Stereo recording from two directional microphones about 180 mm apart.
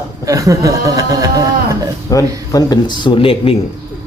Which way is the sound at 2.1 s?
20° left (ahead or behind).